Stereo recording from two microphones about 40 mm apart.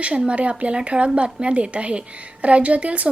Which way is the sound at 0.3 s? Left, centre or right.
Right.